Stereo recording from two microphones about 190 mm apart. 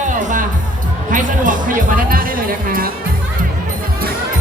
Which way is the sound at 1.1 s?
45° right (ahead or behind).